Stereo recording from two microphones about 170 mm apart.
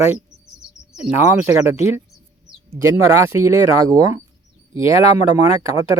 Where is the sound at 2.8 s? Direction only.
15° right (ahead or behind).